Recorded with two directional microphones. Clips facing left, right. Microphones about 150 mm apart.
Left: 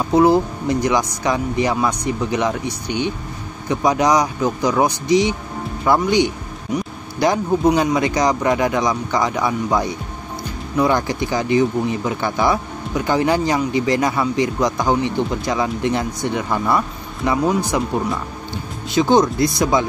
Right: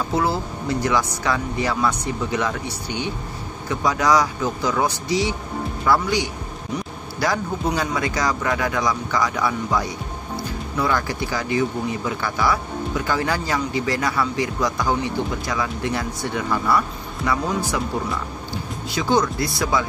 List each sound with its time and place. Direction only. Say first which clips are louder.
0.1 s speech: left 12 dB; 20° left (ahead or behind)
18.9 s speech: left 6 dB; 20° left (ahead or behind)